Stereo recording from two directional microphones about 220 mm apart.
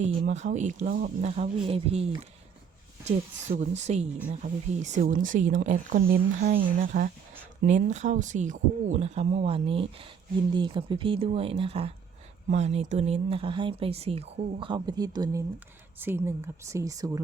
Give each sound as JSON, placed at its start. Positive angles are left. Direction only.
{"t": 0.0, "sound": "speech", "side_deg": -30}
{"t": 3.5, "sound": "speech", "side_deg": -30}